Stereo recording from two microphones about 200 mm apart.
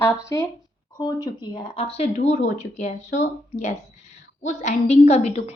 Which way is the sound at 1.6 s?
25° left (ahead or behind).